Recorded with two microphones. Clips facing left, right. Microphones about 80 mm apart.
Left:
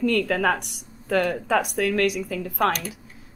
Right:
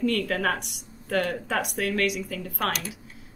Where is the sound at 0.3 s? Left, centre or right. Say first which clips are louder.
Left 4 dB; left.